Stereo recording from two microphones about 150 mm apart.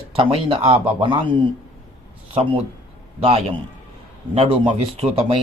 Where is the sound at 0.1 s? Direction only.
35° right (ahead or behind).